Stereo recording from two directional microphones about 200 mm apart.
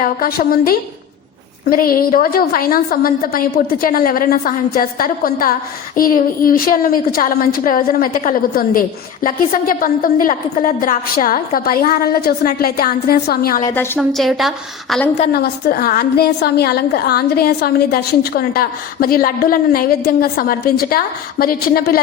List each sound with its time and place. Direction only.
0.0 s a woman's voice: 45° left (ahead or behind)
13.7 s a woman's voice: 10° left (ahead or behind)
15.3 s a woman's voice: 50° left (ahead or behind)